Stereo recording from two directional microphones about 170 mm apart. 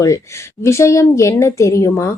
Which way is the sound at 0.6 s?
15° left (ahead or behind).